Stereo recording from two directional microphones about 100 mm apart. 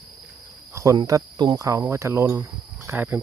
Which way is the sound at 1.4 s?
45° right (ahead or behind).